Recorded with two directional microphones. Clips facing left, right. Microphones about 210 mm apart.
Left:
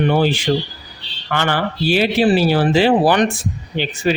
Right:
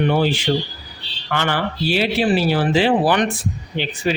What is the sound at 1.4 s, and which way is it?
Speech, 45° left (ahead or behind).